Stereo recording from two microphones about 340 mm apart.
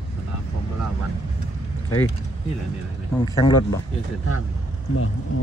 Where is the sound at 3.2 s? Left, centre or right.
Centre.